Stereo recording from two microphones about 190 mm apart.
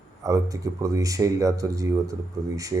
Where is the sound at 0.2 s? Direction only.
15° right (ahead or behind).